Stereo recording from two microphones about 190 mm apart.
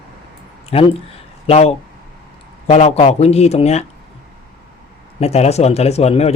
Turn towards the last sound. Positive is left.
turn(degrees=35)  # may be behind; listen again after turning